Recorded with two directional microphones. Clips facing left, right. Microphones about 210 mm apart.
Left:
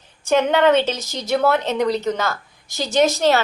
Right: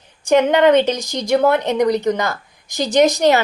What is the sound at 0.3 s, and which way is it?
A woman's voice, 15° right (ahead or behind).